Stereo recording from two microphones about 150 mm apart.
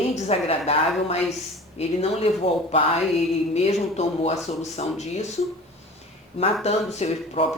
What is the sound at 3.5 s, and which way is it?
Speech, 45° left (ahead or behind).